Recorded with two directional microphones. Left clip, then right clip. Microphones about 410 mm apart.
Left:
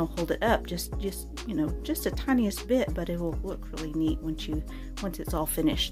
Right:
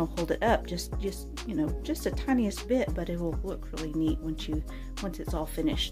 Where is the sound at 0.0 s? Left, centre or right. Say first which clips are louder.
Even; centre.